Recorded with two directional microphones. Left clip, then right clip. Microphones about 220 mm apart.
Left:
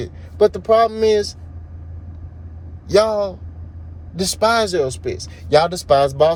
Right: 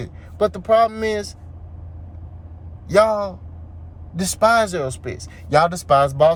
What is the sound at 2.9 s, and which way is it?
Speech, 15° right (ahead or behind).